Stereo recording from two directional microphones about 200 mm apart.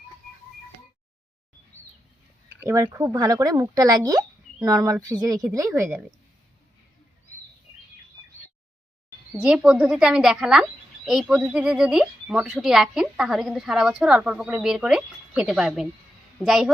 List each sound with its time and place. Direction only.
2.6 s speech: 15° right (ahead or behind)
9.4 s a woman's voice: 5° right (ahead or behind)